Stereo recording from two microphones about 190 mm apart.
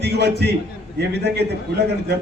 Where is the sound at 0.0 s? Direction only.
60° right (ahead or behind).